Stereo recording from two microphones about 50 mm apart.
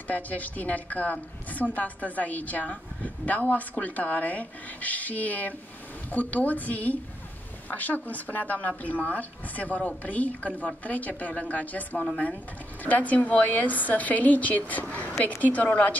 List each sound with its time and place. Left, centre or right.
0.1 s a woman's voice: left